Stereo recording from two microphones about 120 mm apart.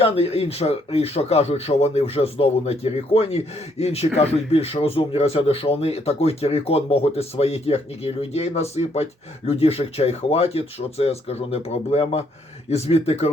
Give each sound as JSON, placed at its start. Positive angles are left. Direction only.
{"t": 0.0, "sound": "a man's voice", "side_deg": 55}